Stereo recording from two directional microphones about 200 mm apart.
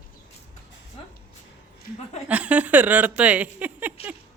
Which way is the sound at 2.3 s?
5° right (ahead or behind).